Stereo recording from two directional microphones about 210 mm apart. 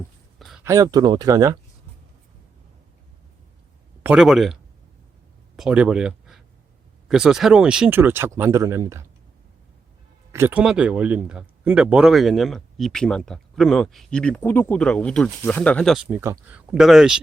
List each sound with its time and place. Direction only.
0.3 s a sound: centre (ahead or behind)
0.6 s speech: 15° right (ahead or behind)
4.0 s speech: 5° right (ahead or behind)
5.5 s speech: 5° right (ahead or behind)
10.3 s speech: 10° right (ahead or behind)
16.2 s speech: 10° right (ahead or behind)